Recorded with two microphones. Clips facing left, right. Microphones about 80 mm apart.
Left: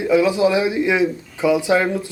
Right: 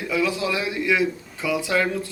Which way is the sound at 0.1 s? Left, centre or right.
Left.